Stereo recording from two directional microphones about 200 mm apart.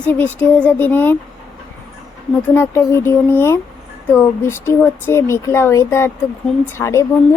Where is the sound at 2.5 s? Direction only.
10° left (ahead or behind).